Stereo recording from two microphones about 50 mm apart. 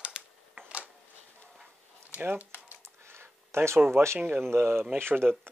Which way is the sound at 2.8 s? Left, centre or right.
Right.